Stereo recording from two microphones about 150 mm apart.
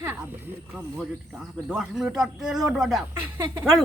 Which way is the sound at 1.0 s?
5° right (ahead or behind).